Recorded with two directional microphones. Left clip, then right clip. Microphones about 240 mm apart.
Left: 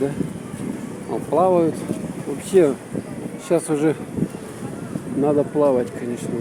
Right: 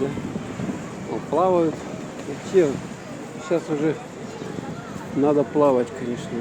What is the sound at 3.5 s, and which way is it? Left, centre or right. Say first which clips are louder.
Speech: left 4 dB; left.